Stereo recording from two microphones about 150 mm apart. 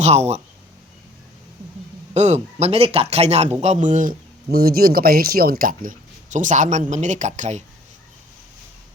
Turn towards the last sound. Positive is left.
turn(degrees=-55)  # may be behind; listen again after turning